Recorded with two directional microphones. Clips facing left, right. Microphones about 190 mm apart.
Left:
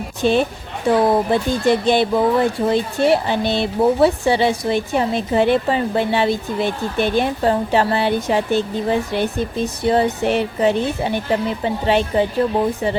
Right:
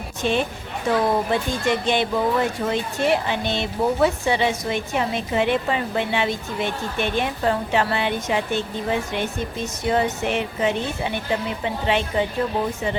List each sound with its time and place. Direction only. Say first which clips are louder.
0.2 s a woman's voice: left 6 dB; 35° left (ahead or behind)